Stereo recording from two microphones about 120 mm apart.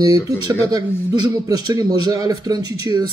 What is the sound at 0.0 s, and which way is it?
A man's voice, 30° right (ahead or behind).